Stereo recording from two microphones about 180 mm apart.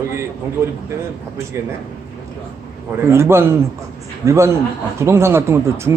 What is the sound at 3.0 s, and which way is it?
Speech, 15° right (ahead or behind).